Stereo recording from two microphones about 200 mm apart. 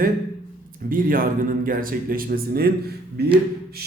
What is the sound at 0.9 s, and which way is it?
Speech, 45° right (ahead or behind).